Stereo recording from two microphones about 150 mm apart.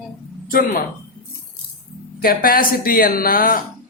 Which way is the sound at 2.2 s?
75° left (ahead or behind).